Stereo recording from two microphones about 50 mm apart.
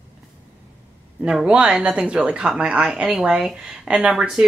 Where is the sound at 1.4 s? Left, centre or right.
Centre.